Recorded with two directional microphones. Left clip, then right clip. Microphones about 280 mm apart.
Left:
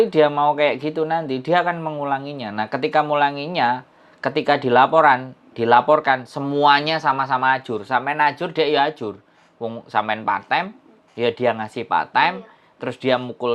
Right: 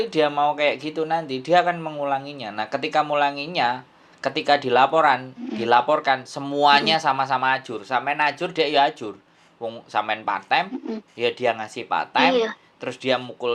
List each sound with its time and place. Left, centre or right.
0.2 s speech: left